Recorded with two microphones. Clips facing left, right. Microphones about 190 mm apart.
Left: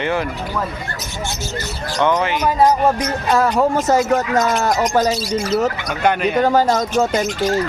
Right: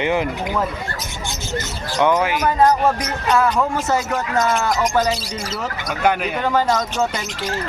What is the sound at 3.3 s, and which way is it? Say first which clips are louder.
Speech: left 2 dB; 35° left (ahead or behind).